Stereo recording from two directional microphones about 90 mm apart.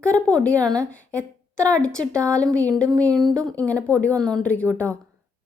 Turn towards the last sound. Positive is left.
turn(degrees=15)  # may be behind; listen again after turning